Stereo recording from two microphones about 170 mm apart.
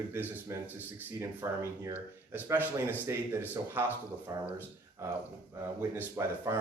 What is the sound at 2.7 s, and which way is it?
Speech, 15° right (ahead or behind).